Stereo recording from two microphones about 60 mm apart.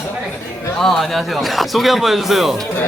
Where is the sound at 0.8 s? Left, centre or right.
Centre.